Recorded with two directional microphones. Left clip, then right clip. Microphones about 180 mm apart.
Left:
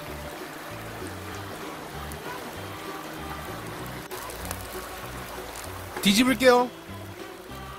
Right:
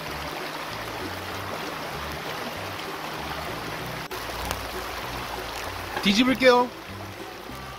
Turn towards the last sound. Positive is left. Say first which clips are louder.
# right 1 dB
turn(degrees=60)  # may be behind; listen again after turning